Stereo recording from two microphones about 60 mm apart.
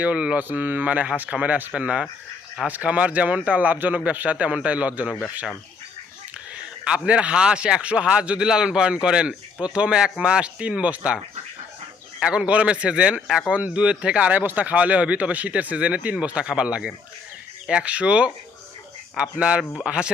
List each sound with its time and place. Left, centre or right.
0.0 s speech: right
6.5 s a man's voice: centre
12.5 s a man's voice: right